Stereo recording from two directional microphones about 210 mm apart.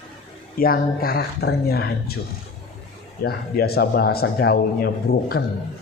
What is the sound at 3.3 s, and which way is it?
Speech, 45° left (ahead or behind).